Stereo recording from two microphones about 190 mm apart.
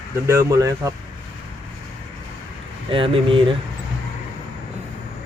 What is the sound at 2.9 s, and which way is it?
Speech, 25° right (ahead or behind).